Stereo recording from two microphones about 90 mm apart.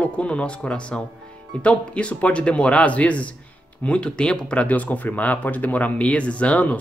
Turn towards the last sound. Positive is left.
turn(degrees=15)  # may be behind; listen again after turning